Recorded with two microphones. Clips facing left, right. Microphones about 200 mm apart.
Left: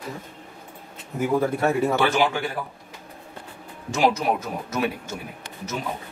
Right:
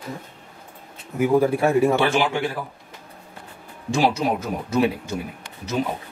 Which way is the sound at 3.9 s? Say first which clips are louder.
Right 1 dB; 30° right (ahead or behind).